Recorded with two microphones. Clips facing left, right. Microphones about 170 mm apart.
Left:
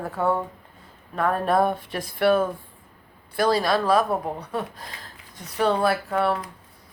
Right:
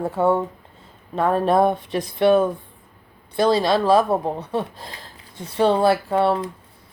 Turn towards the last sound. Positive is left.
turn(degrees=-25)  # may be behind; listen again after turning